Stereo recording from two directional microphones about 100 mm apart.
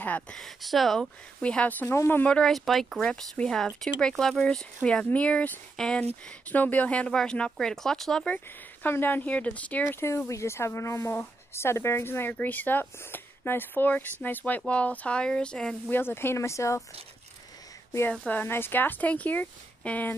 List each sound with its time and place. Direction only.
0.0 s speech: 15° left (ahead or behind)
0.4 s speech: centre (ahead or behind)
1.4 s speech: 10° left (ahead or behind)
1.9 s speech: 25° left (ahead or behind); by 8.4 s 5° left (ahead or behind)
8.5 s speech: 20° left (ahead or behind)
15.9 s speech: 20° left (ahead or behind)
18.1 s speech: 15° left (ahead or behind)